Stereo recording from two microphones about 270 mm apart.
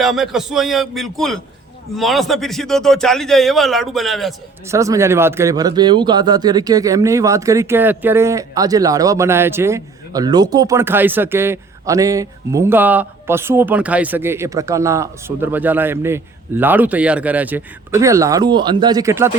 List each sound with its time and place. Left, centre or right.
0.0 s speech: centre
4.7 s speech: centre